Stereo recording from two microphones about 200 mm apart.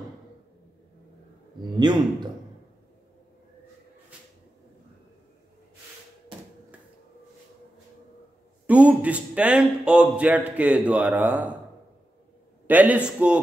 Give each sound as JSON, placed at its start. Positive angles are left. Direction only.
{"t": 1.8, "sound": "speech", "side_deg": -20}
{"t": 8.6, "sound": "a man's voice", "side_deg": -5}
{"t": 12.6, "sound": "a man's voice", "side_deg": -10}